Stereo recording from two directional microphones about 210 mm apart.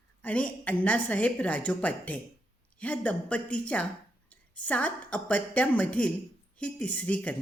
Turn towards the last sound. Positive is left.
turn(degrees=5)  # may be behind; listen again after turning